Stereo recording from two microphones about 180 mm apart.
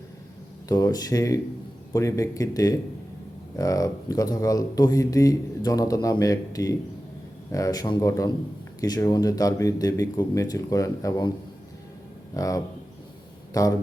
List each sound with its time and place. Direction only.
0.7 s speech: 20° left (ahead or behind)
12.3 s speech: 20° left (ahead or behind)